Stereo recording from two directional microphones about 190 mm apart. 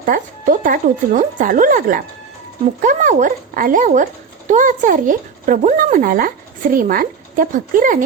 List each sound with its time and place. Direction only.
0.0 s speech: 45° right (ahead or behind)